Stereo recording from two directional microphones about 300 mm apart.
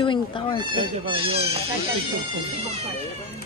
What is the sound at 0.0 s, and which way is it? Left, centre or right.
Speech, centre.